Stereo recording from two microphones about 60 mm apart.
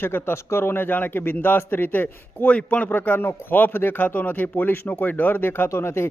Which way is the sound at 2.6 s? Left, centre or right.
Left.